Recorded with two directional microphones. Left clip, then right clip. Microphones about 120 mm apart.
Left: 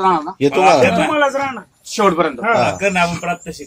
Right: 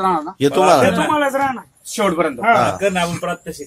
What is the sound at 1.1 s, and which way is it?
Speech, 80° right.